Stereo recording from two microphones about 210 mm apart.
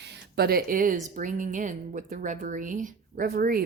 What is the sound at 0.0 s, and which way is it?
Speech, 50° right (ahead or behind).